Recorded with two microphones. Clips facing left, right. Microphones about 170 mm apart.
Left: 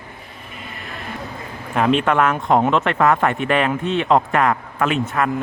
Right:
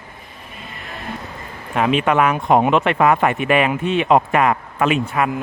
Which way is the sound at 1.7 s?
5° right (ahead or behind).